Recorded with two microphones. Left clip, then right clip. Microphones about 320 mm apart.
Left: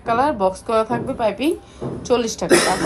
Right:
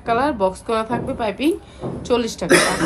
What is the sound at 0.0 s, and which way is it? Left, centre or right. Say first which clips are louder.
A woman's voice: left 1 dB; centre.